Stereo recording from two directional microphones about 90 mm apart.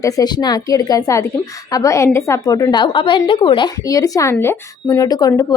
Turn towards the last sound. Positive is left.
turn(degrees=40)  # may be behind; listen again after turning